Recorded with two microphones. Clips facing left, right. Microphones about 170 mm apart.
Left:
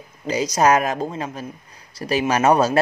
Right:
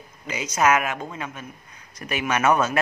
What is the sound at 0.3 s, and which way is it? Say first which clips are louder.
Speech: left 4 dB; 35° left (ahead or behind).